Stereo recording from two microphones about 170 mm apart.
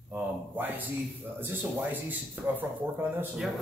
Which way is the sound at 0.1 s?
10° right (ahead or behind).